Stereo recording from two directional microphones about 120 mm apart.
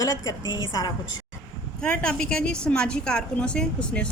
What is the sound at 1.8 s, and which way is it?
A woman's voice, 5° left (ahead or behind).